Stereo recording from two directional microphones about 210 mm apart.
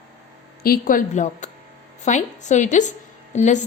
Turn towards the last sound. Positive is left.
turn(degrees=35)  # may be behind; listen again after turning